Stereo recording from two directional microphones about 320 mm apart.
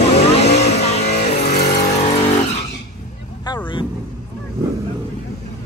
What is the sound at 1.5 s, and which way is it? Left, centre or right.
Vehicle, left.